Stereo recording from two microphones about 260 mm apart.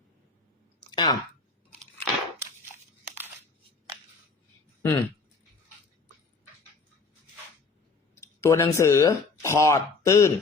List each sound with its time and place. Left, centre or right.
0.9 s a sound: centre
4.8 s speech: centre
8.2 s speech: centre